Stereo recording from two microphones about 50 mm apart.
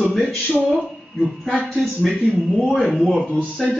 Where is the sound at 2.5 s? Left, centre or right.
Centre.